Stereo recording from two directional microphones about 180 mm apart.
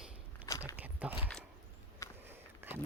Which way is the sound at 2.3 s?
10° right (ahead or behind).